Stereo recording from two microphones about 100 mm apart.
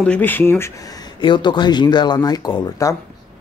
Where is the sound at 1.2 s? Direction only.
50° left (ahead or behind).